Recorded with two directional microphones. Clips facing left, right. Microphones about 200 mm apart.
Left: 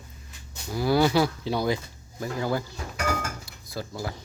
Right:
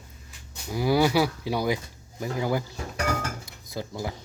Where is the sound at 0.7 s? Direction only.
15° right (ahead or behind).